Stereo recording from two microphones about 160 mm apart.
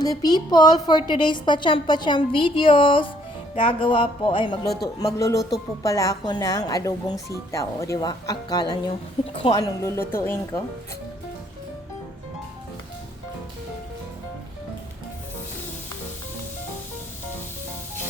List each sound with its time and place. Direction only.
0.0 s a woman's voice: 25° left (ahead or behind)